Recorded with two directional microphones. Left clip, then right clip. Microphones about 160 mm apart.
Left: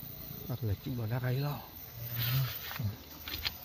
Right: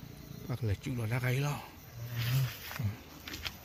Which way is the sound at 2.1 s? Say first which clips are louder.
Left 1 dB; 20° left (ahead or behind).